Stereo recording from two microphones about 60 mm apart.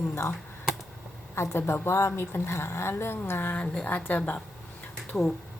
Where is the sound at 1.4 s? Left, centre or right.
Left.